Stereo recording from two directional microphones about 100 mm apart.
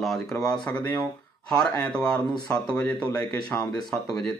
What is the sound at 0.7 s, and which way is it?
Speech, 15° left (ahead or behind).